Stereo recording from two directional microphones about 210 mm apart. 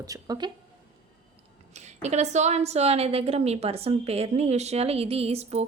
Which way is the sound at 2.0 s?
35° right (ahead or behind).